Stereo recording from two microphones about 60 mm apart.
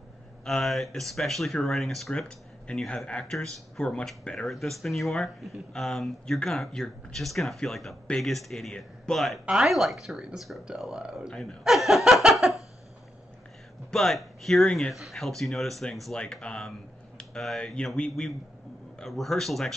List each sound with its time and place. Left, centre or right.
0.5 s speech: centre
2.2 s a sound: centre
3.3 s speech: centre
4.2 s speech: centre
4.5 s speech: centre
9.5 s speech: centre
11.6 s laughter: centre
13.8 s speech: centre
17.2 s a sound: centre
17.8 s speech: centre
18.2 s speech: centre